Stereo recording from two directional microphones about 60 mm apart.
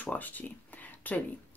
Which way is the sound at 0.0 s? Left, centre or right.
Left.